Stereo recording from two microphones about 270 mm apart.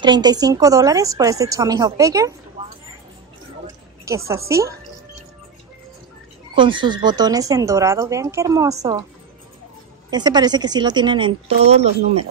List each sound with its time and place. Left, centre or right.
0.0 s speech: centre
4.0 s speech: centre
6.5 s speech: centre
10.1 s speech: centre